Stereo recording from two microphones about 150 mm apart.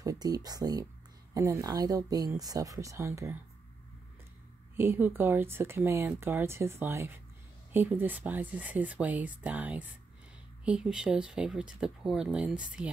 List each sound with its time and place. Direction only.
0.0 s speech: 25° right (ahead or behind)
4.7 s speech: 15° right (ahead or behind)